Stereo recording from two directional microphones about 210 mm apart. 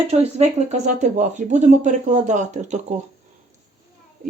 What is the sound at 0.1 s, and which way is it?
Speech, 30° right (ahead or behind).